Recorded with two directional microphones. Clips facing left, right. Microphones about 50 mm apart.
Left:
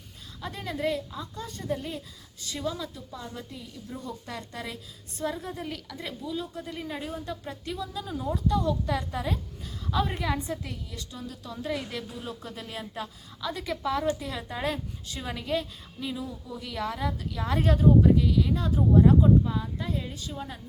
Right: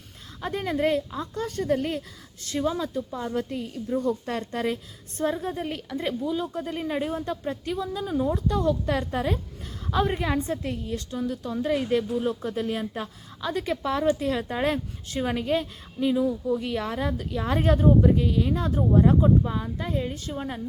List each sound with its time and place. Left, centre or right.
0.4 s a woman's voice: right
1.4 s a woman's voice: right
2.4 s a woman's voice: right
11.4 s a woman's voice: right